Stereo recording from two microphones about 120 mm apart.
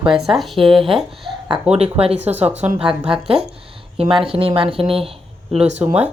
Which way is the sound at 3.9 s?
50° right (ahead or behind).